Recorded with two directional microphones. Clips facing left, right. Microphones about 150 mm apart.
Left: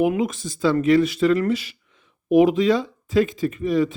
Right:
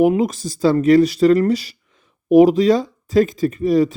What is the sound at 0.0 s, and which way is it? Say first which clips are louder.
A man's voice: right 5 dB; 35° right (ahead or behind).